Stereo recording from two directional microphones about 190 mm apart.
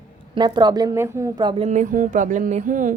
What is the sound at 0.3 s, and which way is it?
A woman's voice, 25° right (ahead or behind).